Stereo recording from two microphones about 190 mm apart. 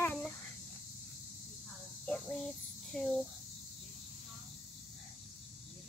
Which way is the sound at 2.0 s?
5° left (ahead or behind).